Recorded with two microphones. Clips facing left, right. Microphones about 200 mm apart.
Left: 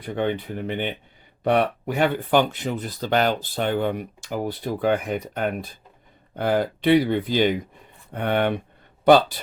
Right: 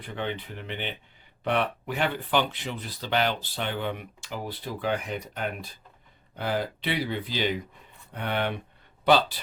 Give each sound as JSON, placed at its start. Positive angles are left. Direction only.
{"t": 0.0, "sound": "speech", "side_deg": 45}